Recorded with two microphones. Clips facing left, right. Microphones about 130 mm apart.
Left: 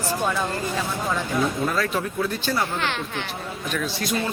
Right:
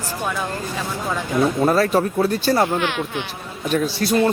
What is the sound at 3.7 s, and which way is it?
Speech, 35° right (ahead or behind).